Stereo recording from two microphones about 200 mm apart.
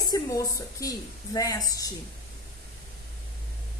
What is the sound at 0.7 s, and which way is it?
A woman's voice, 15° left (ahead or behind).